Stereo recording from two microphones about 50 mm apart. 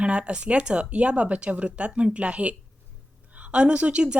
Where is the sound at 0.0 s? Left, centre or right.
Right.